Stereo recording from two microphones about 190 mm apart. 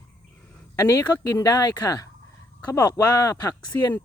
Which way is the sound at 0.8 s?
15° left (ahead or behind).